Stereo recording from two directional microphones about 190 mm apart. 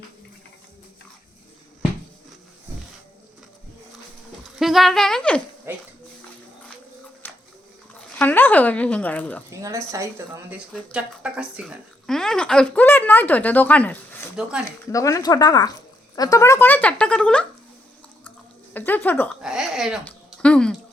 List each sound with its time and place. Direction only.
4.4 s speech: centre (ahead or behind)
5.7 s speech: 10° right (ahead or behind)
7.2 s a sound: 10° left (ahead or behind)
7.9 s speech: 10° left (ahead or behind)
9.5 s a woman's voice: 15° right (ahead or behind)
10.7 s speech: centre (ahead or behind)
18.7 s speech: 10° left (ahead or behind)
19.3 s speech: 5° right (ahead or behind)